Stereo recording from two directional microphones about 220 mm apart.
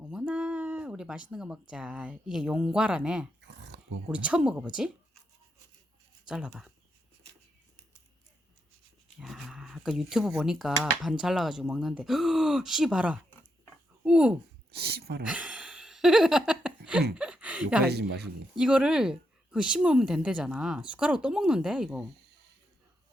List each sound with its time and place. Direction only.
0.0 s a sound: 5° right (ahead or behind)
1.7 s speech: 5° right (ahead or behind)
3.4 s a sound: 50° right (ahead or behind)
4.1 s speech: 5° right (ahead or behind)
6.2 s speech: 5° right (ahead or behind)
9.1 s speech: centre (ahead or behind)
14.7 s speech: 45° right (ahead or behind)
15.2 s a sound: 5° right (ahead or behind)
17.8 s speech: 50° right (ahead or behind)
18.5 s speech: 5° right (ahead or behind)